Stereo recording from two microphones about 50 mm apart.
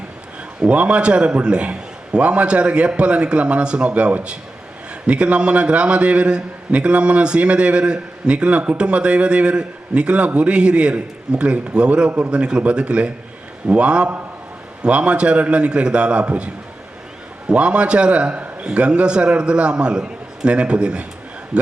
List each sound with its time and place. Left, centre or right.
0.6 s a man's voice: right
12.3 s a man's voice: centre